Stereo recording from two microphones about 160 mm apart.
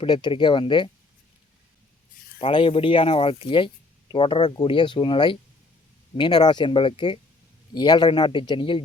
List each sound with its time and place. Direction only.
0.0 s speech: 30° left (ahead or behind)
2.4 s a man's voice: 35° left (ahead or behind)